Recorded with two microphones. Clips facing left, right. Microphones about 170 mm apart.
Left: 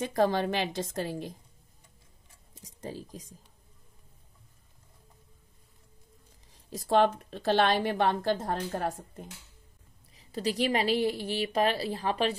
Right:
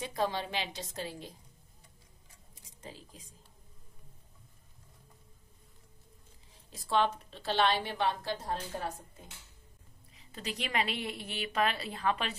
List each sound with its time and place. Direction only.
0.0 s a woman's voice: 50° left (ahead or behind)
2.8 s a woman's voice: 40° left (ahead or behind)
6.7 s a woman's voice: 45° left (ahead or behind)
10.1 s a woman's voice: 35° left (ahead or behind)